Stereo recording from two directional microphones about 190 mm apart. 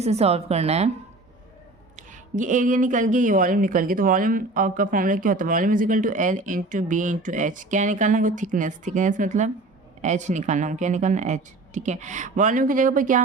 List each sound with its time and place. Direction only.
0.0 s a woman's voice: 35° right (ahead or behind)
2.0 s a woman's voice: 40° right (ahead or behind)